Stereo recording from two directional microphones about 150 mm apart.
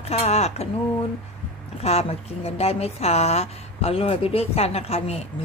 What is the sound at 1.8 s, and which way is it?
A woman's voice, 40° left (ahead or behind).